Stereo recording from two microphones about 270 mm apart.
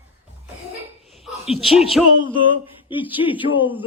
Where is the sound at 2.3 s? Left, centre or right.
Centre.